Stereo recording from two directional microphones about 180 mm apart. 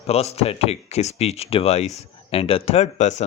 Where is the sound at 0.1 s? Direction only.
35° left (ahead or behind).